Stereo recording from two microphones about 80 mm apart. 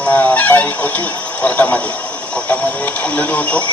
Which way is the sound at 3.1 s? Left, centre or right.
Centre.